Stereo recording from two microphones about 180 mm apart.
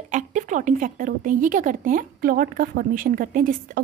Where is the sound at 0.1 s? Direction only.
45° right (ahead or behind).